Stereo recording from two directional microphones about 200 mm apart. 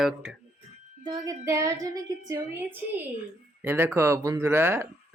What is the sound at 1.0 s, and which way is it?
Speech, 20° right (ahead or behind).